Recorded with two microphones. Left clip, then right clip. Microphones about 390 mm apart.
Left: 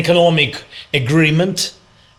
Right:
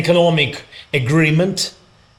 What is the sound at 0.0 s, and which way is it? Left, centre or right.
A man's voice, right.